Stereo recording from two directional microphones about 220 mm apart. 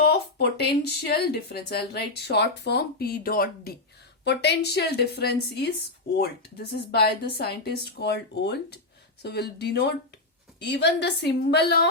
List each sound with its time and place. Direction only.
0.0 s speech: 45° left (ahead or behind)